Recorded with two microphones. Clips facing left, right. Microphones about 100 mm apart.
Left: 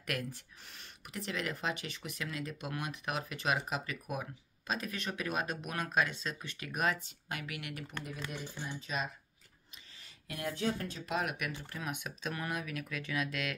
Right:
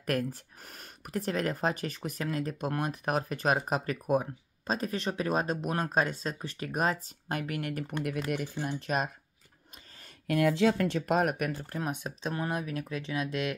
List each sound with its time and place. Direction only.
0.0 s speech: 40° right (ahead or behind)
8.3 s speech: 80° right; by 9.1 s 55° right (ahead or behind)
10.2 s speech: 70° right (ahead or behind)
11.1 s speech: 45° right (ahead or behind); by 13.6 s 25° right (ahead or behind)